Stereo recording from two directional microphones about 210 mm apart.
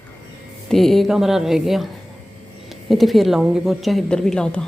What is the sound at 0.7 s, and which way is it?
A woman's voice, centre (ahead or behind).